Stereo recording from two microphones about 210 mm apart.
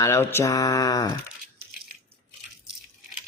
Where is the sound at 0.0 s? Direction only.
10° left (ahead or behind).